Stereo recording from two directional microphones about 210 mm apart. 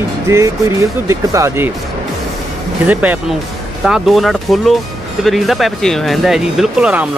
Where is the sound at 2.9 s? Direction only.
10° right (ahead or behind).